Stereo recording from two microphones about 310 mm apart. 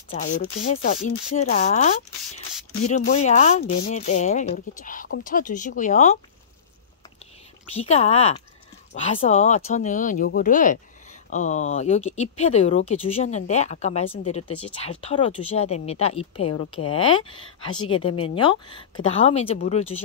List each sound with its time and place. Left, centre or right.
0.1 s a woman's voice: left
7.7 s a woman's voice: centre